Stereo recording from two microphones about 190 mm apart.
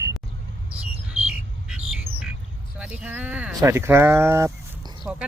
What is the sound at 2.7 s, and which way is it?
Speech, 5° right (ahead or behind).